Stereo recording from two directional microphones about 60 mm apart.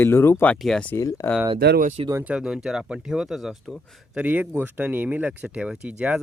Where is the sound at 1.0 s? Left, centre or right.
Left.